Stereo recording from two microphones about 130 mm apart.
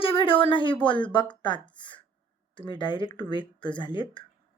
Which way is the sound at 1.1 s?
35° left (ahead or behind).